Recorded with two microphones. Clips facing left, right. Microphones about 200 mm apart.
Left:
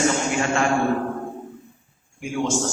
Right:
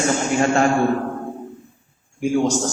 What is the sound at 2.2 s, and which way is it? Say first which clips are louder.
Speech: right 5 dB; 40° right (ahead or behind).